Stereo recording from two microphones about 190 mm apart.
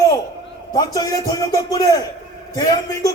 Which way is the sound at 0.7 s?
20° left (ahead or behind).